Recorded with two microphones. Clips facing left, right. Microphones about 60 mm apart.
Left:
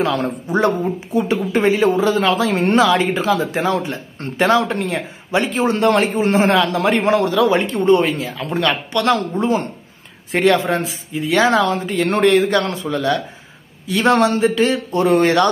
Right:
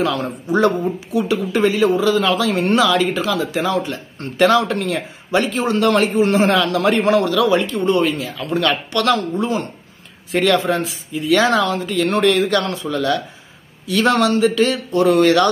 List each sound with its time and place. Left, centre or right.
0.0 s a man's voice: left